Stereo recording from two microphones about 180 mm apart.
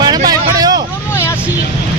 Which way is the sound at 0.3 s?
20° right (ahead or behind).